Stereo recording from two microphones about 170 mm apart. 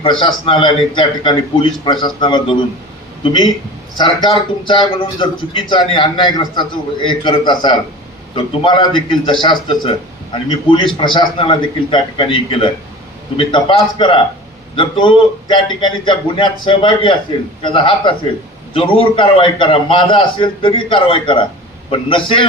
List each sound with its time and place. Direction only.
0.0 s a man's voice: 30° left (ahead or behind)
3.9 s a man's voice: 25° left (ahead or behind)